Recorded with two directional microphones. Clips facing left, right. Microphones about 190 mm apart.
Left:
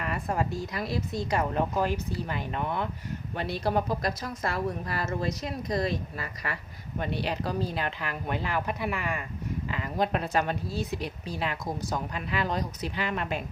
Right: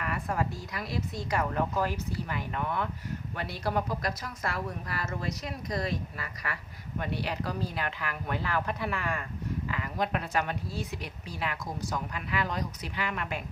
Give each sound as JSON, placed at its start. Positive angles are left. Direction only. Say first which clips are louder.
{"t": 0.0, "sound": "speech", "louder": "left 2 dB", "side_deg": 25}
{"t": 9.6, "sound": "speech", "louder": "left 4 dB", "side_deg": 25}